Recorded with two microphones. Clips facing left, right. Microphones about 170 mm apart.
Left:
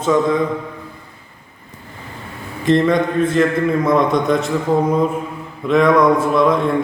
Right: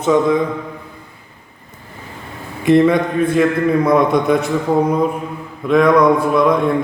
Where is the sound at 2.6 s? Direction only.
10° right (ahead or behind).